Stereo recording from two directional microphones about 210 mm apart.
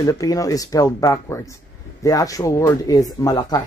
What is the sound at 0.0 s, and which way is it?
Speech, 15° left (ahead or behind).